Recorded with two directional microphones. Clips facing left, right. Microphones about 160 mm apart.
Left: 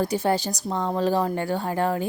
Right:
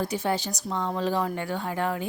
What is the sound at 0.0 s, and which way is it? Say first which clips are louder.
Speech: left 4 dB; 40° left (ahead or behind).